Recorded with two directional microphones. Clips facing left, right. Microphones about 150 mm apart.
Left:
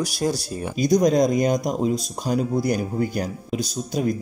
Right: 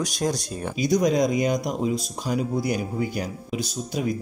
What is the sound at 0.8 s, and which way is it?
Speech, 40° left (ahead or behind).